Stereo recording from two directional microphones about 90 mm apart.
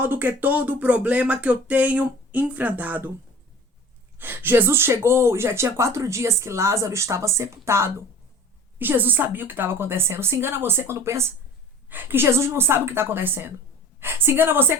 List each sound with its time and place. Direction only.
0.0 s speech: 20° right (ahead or behind)
4.2 s speech: 20° right (ahead or behind)